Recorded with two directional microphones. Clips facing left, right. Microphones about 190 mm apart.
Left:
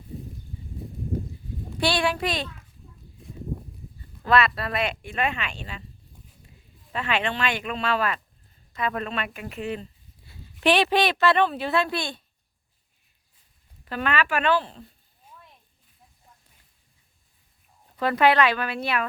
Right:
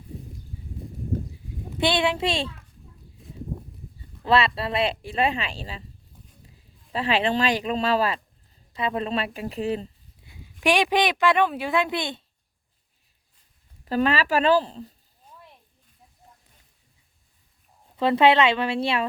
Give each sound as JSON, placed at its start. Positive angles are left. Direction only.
{"t": 1.8, "sound": "speech", "side_deg": -20}
{"t": 4.2, "sound": "speech", "side_deg": -30}
{"t": 6.9, "sound": "speech", "side_deg": -35}
{"t": 10.2, "sound": "speech", "side_deg": -10}
{"t": 13.8, "sound": "speech", "side_deg": -35}
{"t": 17.9, "sound": "speech", "side_deg": -25}